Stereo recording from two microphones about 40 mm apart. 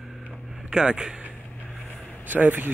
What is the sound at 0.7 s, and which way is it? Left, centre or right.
Speech, right.